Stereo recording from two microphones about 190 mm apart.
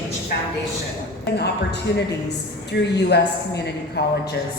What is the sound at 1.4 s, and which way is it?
A woman's voice, 60° left (ahead or behind).